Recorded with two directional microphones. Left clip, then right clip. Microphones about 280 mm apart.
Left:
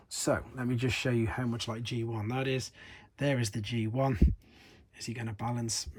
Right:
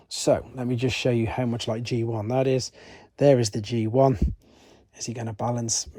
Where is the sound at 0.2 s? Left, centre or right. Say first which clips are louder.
Right 9 dB; centre.